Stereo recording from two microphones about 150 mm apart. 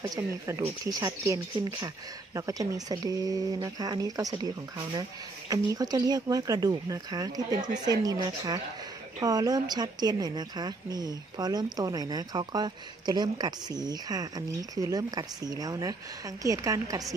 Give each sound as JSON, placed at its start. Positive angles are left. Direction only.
{"t": 0.0, "sound": "speech", "side_deg": -25}
{"t": 5.5, "sound": "speech", "side_deg": -25}